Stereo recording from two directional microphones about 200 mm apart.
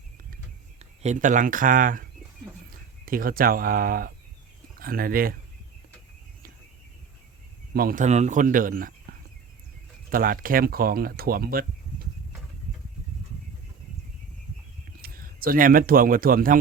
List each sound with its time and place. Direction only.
0.8 s speech: 35° right (ahead or behind)
7.7 s speech: 50° right (ahead or behind)
9.1 s a sound: 50° right (ahead or behind)
10.1 s speech: 45° right (ahead or behind)
15.0 s speech: 45° right (ahead or behind)